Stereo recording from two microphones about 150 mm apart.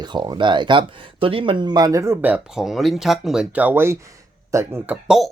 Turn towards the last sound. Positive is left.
turn(degrees=-5)  # may be behind; listen again after turning